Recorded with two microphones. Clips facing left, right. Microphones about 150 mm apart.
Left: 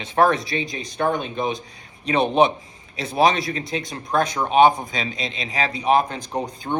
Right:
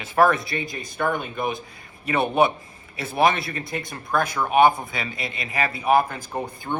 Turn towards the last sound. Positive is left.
turn(degrees=15)  # may be behind; listen again after turning